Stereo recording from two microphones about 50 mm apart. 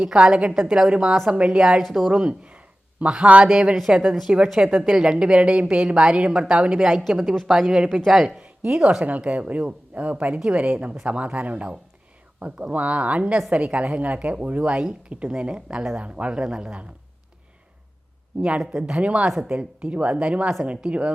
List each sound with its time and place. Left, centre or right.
0.0 s a woman's voice: centre
1.8 s speech: centre
2.0 s a woman's voice: centre
8.4 s a sound: right
8.8 s a woman's voice: centre
9.0 s a woman's voice: right
18.3 s a woman's voice: right